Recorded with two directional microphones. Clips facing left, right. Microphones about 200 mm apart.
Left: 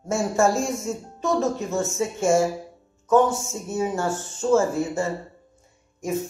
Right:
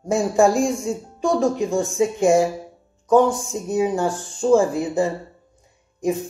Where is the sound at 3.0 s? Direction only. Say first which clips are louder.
Right 3 dB; 15° right (ahead or behind).